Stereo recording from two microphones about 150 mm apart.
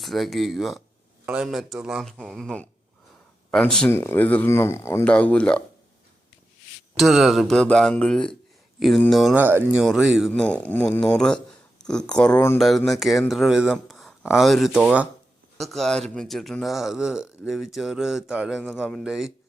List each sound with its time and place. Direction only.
0.0 s a man's voice: centre (ahead or behind)
3.8 s speech: 15° left (ahead or behind)
6.9 s a man's voice: centre (ahead or behind)
9.3 s a man's voice: 15° right (ahead or behind)
10.4 s a man's voice: 10° left (ahead or behind)